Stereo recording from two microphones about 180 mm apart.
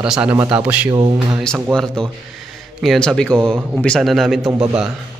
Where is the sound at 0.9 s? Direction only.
25° right (ahead or behind).